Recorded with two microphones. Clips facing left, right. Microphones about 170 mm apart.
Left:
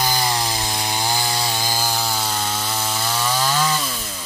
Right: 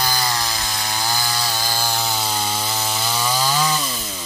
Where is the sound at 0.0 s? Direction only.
20° left (ahead or behind).